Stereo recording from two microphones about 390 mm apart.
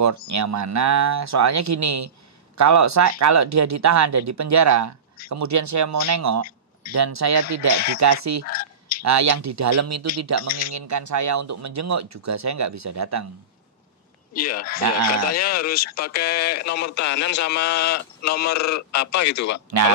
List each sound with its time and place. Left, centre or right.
0.0 s speech: right
8.5 s a sound: left
9.0 s speech: right
14.3 s speech: left
16.8 s speech: left
17.2 s speech: left
18.5 s speech: left
19.2 s speech: left